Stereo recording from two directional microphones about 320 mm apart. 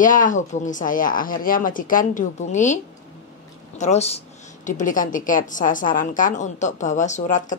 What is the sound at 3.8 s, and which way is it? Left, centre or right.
Speech, centre.